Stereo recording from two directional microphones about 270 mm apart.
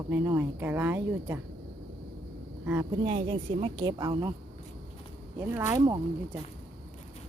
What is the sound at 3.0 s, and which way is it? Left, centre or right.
A woman's voice, right.